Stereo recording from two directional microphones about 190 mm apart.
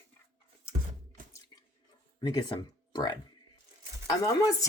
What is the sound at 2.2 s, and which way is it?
Speech, 25° left (ahead or behind).